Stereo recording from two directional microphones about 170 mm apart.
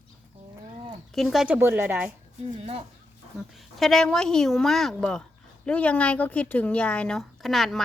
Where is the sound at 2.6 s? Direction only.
35° right (ahead or behind).